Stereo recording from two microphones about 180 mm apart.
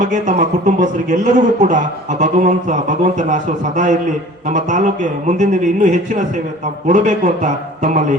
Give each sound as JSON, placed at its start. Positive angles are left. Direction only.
{"t": 0.0, "sound": "speech", "side_deg": -45}